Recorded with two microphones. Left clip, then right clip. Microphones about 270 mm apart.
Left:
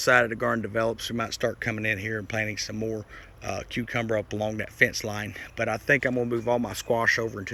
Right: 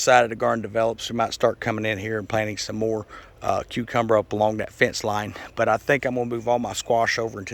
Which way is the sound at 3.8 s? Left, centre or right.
Centre.